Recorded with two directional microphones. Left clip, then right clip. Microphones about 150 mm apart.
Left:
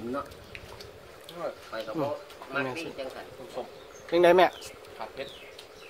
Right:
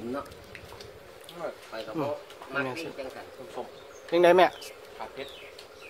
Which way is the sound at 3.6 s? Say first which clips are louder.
Left 1 dB; 45° left (ahead or behind).